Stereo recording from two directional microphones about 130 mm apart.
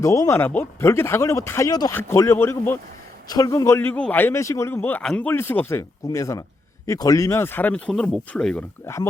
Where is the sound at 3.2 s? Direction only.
30° left (ahead or behind); by 8.6 s 10° left (ahead or behind).